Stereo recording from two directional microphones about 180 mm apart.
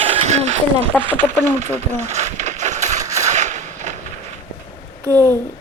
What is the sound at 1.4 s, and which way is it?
Speech, 40° right (ahead or behind).